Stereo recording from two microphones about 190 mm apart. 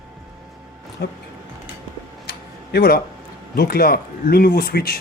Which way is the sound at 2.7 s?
55° left (ahead or behind).